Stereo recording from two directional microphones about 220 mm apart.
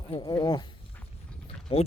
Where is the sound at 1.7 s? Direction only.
25° left (ahead or behind).